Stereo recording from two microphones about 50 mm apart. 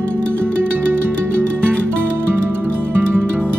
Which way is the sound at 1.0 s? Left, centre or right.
Right.